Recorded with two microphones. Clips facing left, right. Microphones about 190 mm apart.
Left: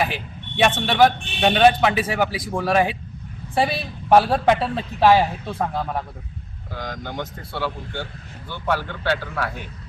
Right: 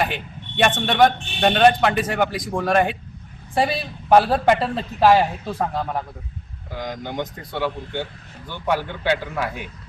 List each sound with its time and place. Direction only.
0.0 s speech: centre (ahead or behind)
6.7 s speech: 15° right (ahead or behind)